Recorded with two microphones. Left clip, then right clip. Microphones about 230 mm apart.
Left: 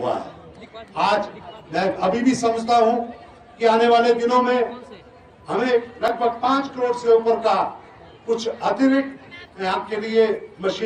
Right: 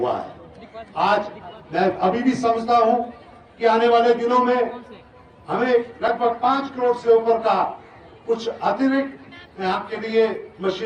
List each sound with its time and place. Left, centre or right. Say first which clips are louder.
0.8 s a man's voice: even; left